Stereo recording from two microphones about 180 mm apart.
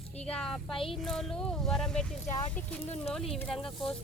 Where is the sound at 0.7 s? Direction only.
30° left (ahead or behind).